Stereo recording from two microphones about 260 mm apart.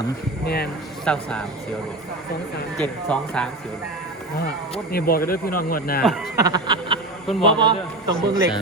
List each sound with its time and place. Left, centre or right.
0.4 s speech: left
1.0 s speech: centre
2.7 s speech: centre
4.9 s speech: left
6.3 s a sound: centre
7.4 s a man's voice: centre